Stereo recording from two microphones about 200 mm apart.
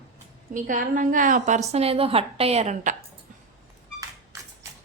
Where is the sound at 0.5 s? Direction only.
40° right (ahead or behind).